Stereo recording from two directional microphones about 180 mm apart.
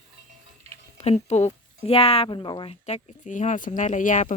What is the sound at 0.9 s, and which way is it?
Speech, 40° left (ahead or behind).